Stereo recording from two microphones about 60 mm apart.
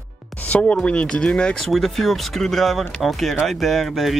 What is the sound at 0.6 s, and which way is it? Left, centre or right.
Speech, centre.